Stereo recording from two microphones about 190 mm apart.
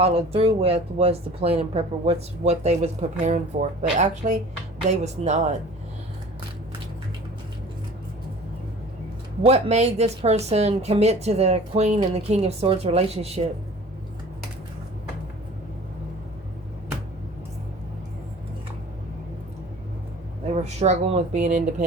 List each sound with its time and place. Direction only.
0.0 s speech: 30° right (ahead or behind)
9.4 s speech: 35° right (ahead or behind)
20.6 s speech: 35° right (ahead or behind)